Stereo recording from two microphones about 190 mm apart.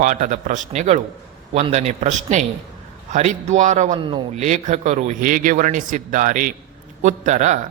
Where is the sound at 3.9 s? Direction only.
30° right (ahead or behind).